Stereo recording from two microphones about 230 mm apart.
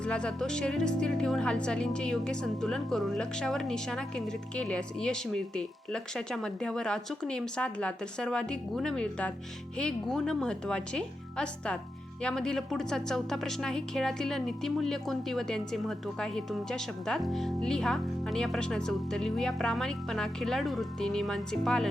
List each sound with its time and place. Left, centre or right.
0.0 s a woman's voice: centre